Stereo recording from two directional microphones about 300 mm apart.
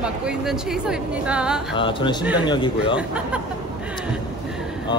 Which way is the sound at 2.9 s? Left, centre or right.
Centre.